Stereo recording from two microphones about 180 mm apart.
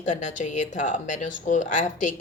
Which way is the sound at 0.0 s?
45° left (ahead or behind).